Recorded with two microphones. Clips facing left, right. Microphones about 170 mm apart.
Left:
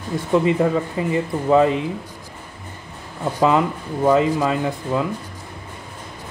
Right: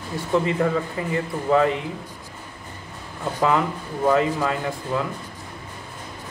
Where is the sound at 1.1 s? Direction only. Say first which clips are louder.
Left 4 dB; 20° left (ahead or behind).